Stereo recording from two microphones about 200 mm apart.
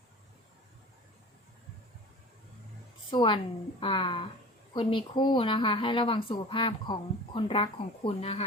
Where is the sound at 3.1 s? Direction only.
25° left (ahead or behind).